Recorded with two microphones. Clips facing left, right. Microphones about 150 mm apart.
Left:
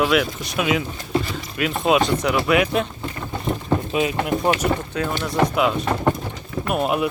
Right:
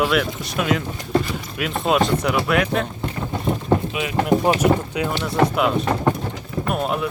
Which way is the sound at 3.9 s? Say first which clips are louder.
Left 5 dB; 30° left (ahead or behind).